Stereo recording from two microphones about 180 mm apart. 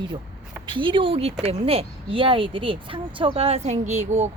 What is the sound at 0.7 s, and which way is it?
A woman's voice, 30° right (ahead or behind).